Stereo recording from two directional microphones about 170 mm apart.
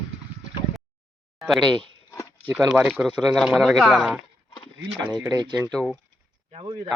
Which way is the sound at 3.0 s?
5° right (ahead or behind).